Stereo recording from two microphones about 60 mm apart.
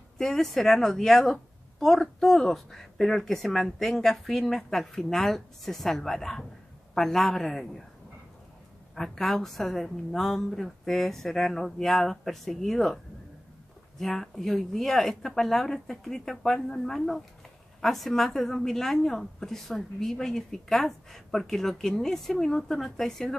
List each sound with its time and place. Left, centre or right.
0.2 s a woman's voice: centre
8.9 s a woman's voice: centre